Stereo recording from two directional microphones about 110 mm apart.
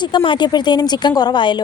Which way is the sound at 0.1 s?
45° left (ahead or behind).